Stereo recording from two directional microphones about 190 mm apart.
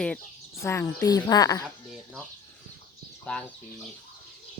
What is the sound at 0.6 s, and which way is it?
A woman's voice, 15° left (ahead or behind).